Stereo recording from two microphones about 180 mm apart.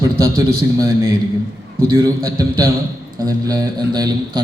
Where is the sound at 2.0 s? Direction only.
20° right (ahead or behind).